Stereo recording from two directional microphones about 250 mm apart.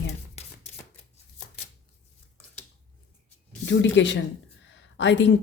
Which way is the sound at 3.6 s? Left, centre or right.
Left.